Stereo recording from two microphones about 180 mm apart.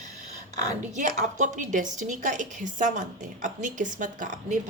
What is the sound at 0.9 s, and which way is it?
A woman's voice, 45° right (ahead or behind).